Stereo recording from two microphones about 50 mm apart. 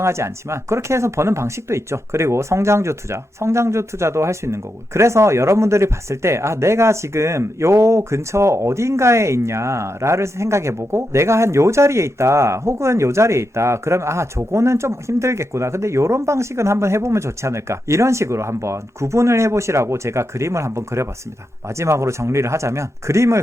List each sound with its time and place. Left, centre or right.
0.0 s speech: right